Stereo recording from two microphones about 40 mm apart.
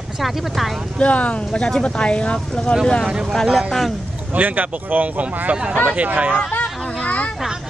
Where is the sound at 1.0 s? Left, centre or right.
Left.